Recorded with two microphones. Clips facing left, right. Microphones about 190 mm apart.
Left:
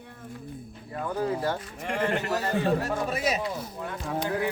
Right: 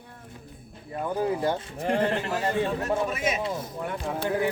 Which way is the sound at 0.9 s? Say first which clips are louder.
Right 2 dB; 15° right (ahead or behind).